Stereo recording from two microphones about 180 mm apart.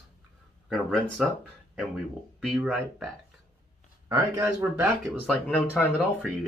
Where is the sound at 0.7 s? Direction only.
Centre (ahead or behind).